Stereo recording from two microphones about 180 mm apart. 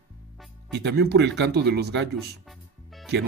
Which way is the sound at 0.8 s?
70° right (ahead or behind).